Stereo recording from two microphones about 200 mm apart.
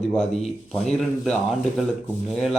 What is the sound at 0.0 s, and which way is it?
A man's voice, 5° left (ahead or behind).